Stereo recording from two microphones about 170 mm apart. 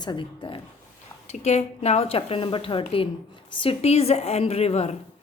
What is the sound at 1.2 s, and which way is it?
A woman's voice, 40° left (ahead or behind).